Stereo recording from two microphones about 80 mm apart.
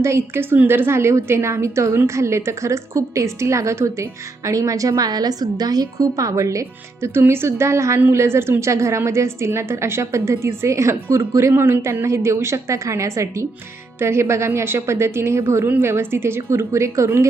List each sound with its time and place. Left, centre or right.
0.0 s a woman's voice: right
0.5 s a woman's voice: right